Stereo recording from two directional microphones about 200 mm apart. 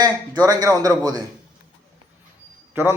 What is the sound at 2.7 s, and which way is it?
Speech, 10° right (ahead or behind).